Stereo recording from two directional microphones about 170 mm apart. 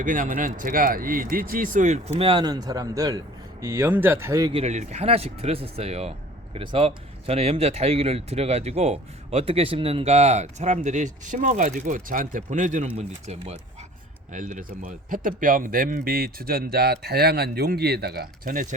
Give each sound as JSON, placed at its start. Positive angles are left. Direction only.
{"t": 0.0, "sound": "a man's voice", "side_deg": -50}
{"t": 4.5, "sound": "speech", "side_deg": -40}